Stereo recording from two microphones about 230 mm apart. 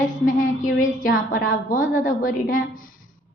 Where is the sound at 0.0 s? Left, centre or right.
Left.